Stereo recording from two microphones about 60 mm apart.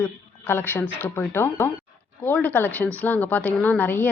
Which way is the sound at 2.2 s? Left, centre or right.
Left.